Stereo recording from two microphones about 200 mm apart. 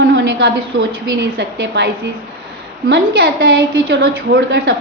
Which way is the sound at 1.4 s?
60° right (ahead or behind).